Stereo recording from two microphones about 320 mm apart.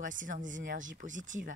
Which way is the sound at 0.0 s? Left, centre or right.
Right.